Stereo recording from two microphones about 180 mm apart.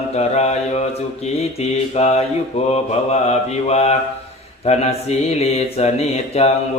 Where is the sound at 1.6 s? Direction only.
35° left (ahead or behind).